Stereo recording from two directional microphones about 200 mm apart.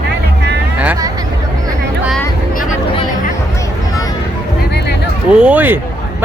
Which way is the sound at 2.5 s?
45° left (ahead or behind).